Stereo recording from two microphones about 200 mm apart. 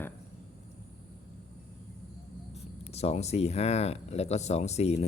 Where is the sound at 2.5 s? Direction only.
30° left (ahead or behind).